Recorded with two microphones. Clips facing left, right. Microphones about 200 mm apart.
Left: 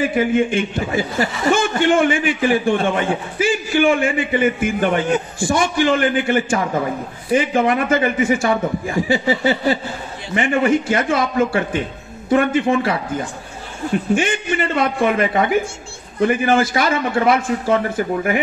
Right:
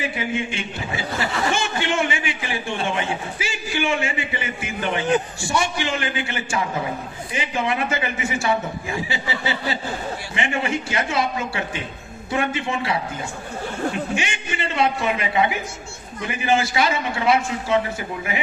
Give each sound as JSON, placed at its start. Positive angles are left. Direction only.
{"t": 0.0, "sound": "a man's voice", "side_deg": 50}
{"t": 14.1, "sound": "a man's voice", "side_deg": 50}